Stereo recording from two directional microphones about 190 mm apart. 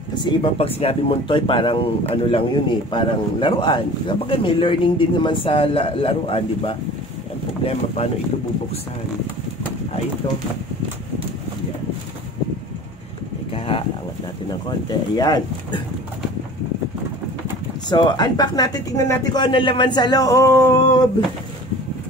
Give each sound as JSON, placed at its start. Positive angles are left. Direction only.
{"t": 0.1, "sound": "speech", "side_deg": 25}
{"t": 13.7, "sound": "a sound", "side_deg": 25}
{"t": 14.9, "sound": "speech", "side_deg": 20}
{"t": 17.8, "sound": "speech", "side_deg": 20}